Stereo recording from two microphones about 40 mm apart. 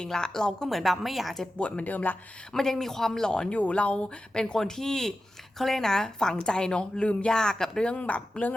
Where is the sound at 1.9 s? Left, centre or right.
Left.